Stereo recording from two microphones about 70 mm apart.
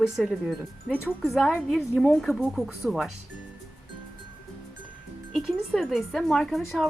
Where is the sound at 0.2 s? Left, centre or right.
Centre.